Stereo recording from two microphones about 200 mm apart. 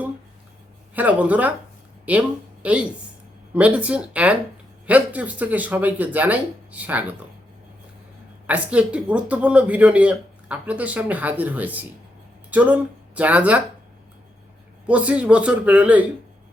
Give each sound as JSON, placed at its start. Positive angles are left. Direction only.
{"t": 0.9, "sound": "speech", "side_deg": -5}
{"t": 8.4, "sound": "speech", "side_deg": -5}
{"t": 14.8, "sound": "speech", "side_deg": -5}